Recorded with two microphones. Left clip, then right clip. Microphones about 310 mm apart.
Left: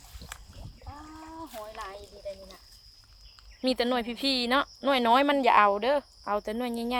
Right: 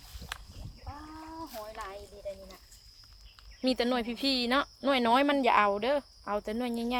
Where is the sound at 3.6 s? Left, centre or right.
Centre.